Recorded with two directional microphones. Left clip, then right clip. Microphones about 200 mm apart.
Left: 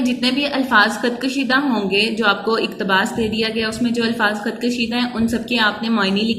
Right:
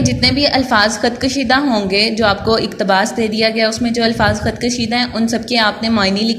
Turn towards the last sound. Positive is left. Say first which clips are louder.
# right 4 dB
turn(degrees=-30)  # may be behind; listen again after turning